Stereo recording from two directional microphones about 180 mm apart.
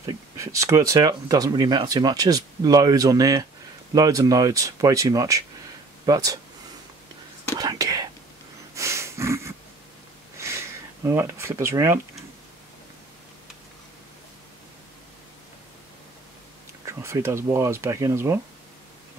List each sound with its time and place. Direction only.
0.0 s speech: 15° right (ahead or behind)
7.5 s whispering: 20° right (ahead or behind)
8.7 s a sound: 15° right (ahead or behind)
11.1 s speech: 15° right (ahead or behind)
16.8 s speech: 15° right (ahead or behind)